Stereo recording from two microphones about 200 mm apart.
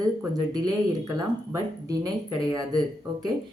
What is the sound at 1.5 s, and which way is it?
Speech, 20° right (ahead or behind).